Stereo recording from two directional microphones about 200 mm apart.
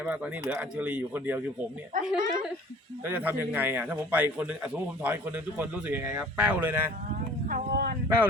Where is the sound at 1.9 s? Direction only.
40° right (ahead or behind).